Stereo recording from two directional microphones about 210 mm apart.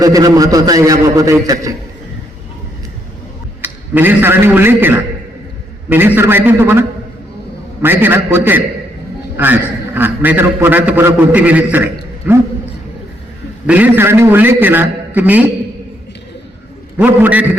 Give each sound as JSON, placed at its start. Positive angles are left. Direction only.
{"t": 0.0, "sound": "a man's voice", "side_deg": -15}
{"t": 3.9, "sound": "a man's voice", "side_deg": -10}
{"t": 13.7, "sound": "a man's voice", "side_deg": -10}
{"t": 17.0, "sound": "a man's voice", "side_deg": -5}